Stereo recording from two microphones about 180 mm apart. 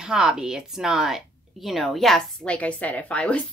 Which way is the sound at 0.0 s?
5° right (ahead or behind).